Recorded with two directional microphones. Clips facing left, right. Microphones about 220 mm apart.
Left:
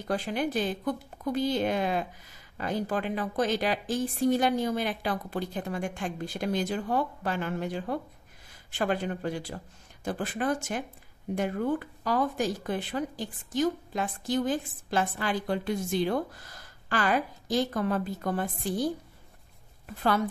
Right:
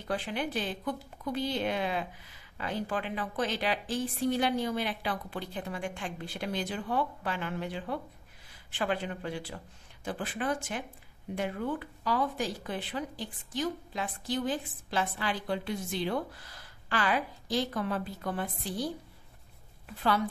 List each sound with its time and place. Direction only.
0.1 s speech: 40° left (ahead or behind)